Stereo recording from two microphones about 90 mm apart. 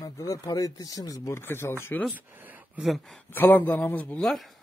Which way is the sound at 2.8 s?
Centre (ahead or behind).